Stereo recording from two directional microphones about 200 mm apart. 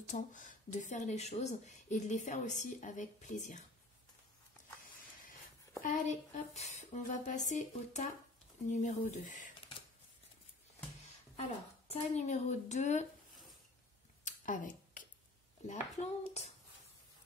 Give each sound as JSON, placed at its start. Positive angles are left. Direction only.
{"t": 0.1, "sound": "speech", "side_deg": 40}
{"t": 5.8, "sound": "speech", "side_deg": 40}
{"t": 11.9, "sound": "speech", "side_deg": 35}
{"t": 14.2, "sound": "a sound", "side_deg": 40}
{"t": 15.6, "sound": "speech", "side_deg": 35}